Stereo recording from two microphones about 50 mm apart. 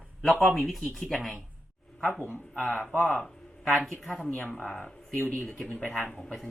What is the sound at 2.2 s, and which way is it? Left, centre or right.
Speech, left.